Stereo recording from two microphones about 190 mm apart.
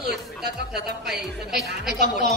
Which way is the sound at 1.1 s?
60° right (ahead or behind).